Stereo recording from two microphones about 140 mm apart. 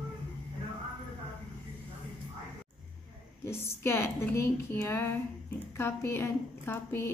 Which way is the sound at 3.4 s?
15° left (ahead or behind).